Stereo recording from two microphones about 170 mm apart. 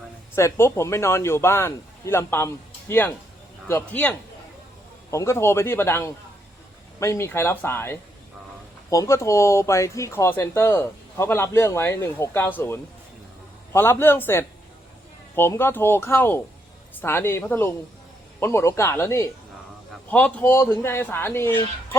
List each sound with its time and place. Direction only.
0.3 s speech: 15° left (ahead or behind)
3.7 s speech: 10° left (ahead or behind)
5.1 s speech: 15° left (ahead or behind)